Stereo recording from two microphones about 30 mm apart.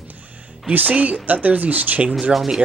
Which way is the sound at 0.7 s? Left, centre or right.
Right.